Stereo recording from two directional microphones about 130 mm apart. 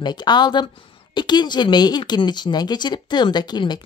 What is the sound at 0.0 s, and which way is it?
A woman's voice, 35° left (ahead or behind).